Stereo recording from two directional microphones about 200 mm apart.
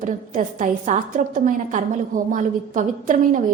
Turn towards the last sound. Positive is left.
turn(degrees=-40)  # may be behind; listen again after turning